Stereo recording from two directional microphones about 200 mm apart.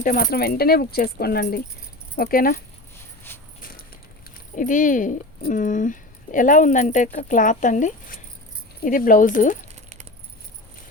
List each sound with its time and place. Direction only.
0.0 s speech: 45° left (ahead or behind)
4.5 s speech: 40° left (ahead or behind)